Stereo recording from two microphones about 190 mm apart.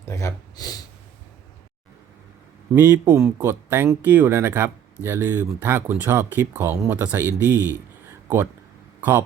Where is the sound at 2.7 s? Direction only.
15° right (ahead or behind).